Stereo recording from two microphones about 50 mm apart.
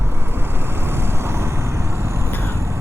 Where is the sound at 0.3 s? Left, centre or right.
Right.